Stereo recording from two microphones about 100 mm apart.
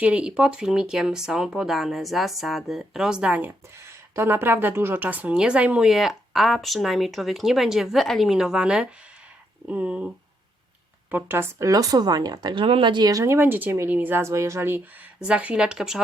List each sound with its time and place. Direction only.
0.0 s speech: 10° right (ahead or behind)
3.8 s a woman's voice: 25° right (ahead or behind)
11.1 s a woman's voice: 25° right (ahead or behind)
11.7 s speech: 40° right (ahead or behind)
12.6 s speech: 65° right (ahead or behind)
13.1 s a woman's voice: 30° right (ahead or behind)
15.2 s speech: 10° right (ahead or behind)